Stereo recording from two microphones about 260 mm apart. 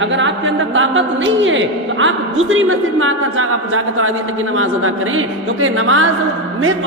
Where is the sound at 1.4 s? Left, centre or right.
Right.